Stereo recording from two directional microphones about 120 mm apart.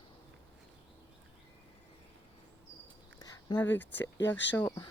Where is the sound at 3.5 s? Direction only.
15° left (ahead or behind).